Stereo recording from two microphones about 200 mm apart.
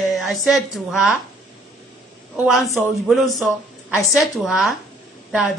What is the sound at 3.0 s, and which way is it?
A man's voice, centre (ahead or behind).